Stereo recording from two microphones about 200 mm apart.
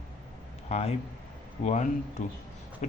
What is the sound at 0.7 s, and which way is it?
Speech, 30° left (ahead or behind).